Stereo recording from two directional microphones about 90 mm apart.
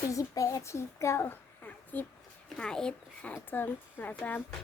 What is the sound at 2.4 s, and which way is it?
Speech, 10° left (ahead or behind).